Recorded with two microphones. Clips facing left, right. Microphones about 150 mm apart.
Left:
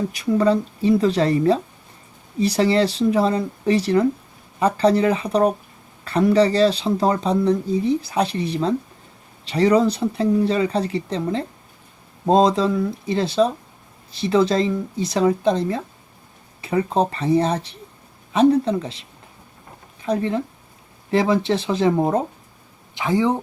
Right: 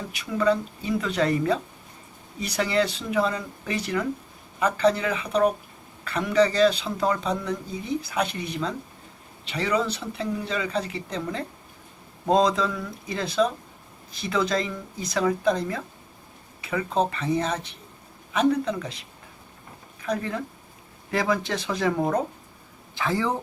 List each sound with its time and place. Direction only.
0.1 s speech: 35° left (ahead or behind); by 23.4 s 20° left (ahead or behind)